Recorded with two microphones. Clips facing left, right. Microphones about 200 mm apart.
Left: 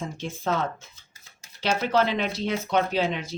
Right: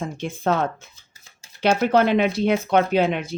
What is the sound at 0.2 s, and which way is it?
Speech, 60° right (ahead or behind).